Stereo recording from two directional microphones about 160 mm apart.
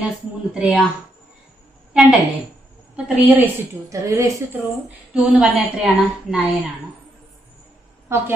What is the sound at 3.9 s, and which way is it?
Speech, 20° right (ahead or behind).